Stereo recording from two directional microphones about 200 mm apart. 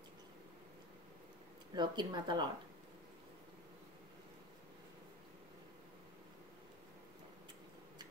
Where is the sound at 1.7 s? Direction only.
20° right (ahead or behind).